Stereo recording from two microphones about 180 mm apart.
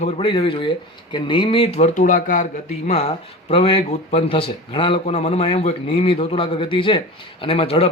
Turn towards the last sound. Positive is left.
turn(degrees=35)  # may be behind; listen again after turning